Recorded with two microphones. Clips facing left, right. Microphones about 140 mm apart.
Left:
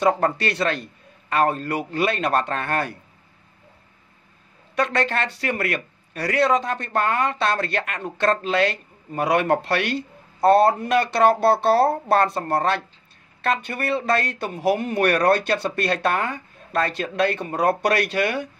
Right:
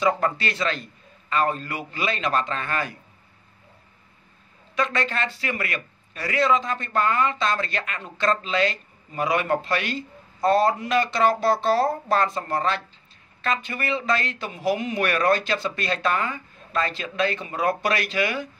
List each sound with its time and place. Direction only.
0.4 s speech: 60° left (ahead or behind)
4.7 s speech: 60° left (ahead or behind)